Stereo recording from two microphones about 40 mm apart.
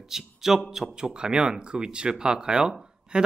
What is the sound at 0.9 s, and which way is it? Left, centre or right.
Speech, centre.